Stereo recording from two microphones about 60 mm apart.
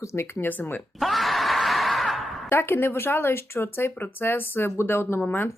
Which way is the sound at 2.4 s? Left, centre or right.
Left.